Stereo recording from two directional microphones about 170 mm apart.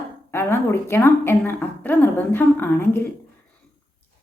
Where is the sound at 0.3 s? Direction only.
15° left (ahead or behind).